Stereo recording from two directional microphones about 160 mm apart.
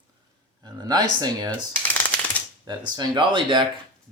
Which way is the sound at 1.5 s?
10° left (ahead or behind).